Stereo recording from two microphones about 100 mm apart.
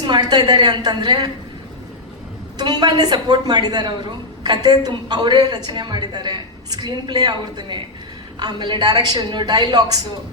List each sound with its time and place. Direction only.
0.0 s a woman's voice: 45° right (ahead or behind)
2.6 s a woman's voice: 45° right (ahead or behind)